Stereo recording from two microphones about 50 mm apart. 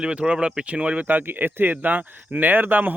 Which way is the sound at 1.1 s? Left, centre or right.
Right.